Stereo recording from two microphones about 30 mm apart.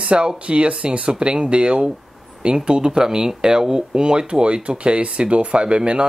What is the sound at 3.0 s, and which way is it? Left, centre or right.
Speech, right.